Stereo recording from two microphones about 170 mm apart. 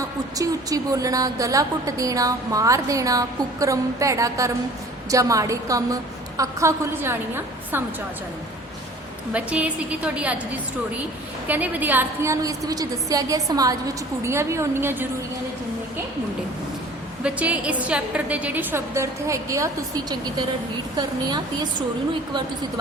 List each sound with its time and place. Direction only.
0.3 s a woman's voice: 20° right (ahead or behind)
9.3 s a woman's voice: 10° right (ahead or behind)
17.2 s a woman's voice: 5° right (ahead or behind); by 21.7 s 25° right (ahead or behind)